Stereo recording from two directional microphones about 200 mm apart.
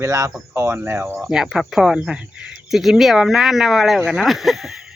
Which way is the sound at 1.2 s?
Centre (ahead or behind).